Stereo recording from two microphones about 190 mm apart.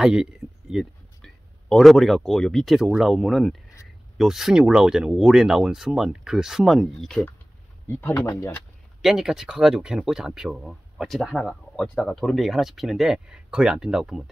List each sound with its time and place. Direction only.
0.0 s speech: 5° right (ahead or behind)
8.3 s speech: 20° left (ahead or behind)
9.0 s speech: 5° right (ahead or behind)